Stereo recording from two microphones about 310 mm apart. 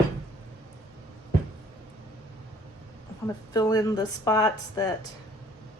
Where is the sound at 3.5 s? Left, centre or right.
Centre.